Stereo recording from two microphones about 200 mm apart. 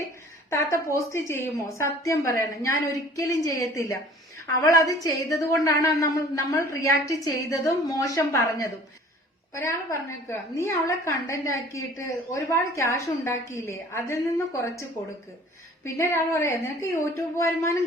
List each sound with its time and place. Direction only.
0.5 s a woman's voice: 15° left (ahead or behind)